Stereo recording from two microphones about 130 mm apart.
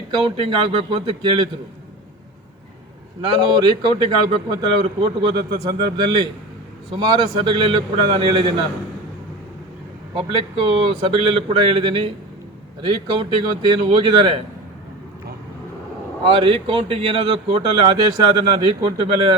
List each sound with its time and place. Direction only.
0.1 s a man's voice: 40° right (ahead or behind)
3.6 s a man's voice: 35° right (ahead or behind)
10.2 s a man's voice: 40° right (ahead or behind)
16.2 s a man's voice: 45° right (ahead or behind)